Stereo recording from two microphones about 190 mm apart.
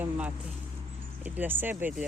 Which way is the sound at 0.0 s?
10° right (ahead or behind).